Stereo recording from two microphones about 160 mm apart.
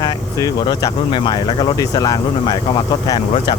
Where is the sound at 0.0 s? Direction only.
20° left (ahead or behind).